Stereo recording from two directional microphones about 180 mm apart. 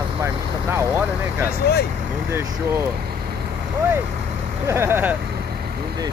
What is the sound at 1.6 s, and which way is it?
Speech, 60° left (ahead or behind).